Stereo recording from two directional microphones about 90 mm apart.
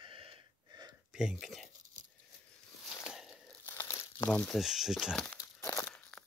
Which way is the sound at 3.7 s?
30° left (ahead or behind).